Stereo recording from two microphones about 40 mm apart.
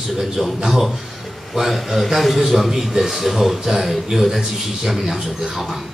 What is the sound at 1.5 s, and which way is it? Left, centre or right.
A man's voice, centre.